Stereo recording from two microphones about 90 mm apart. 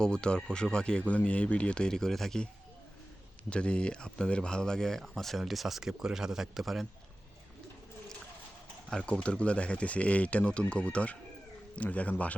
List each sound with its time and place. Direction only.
0.0 s speech: 10° left (ahead or behind)
3.5 s speech: 10° left (ahead or behind)
8.9 s speech: 10° left (ahead or behind)